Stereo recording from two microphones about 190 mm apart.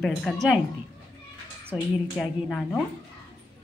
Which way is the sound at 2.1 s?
5° left (ahead or behind).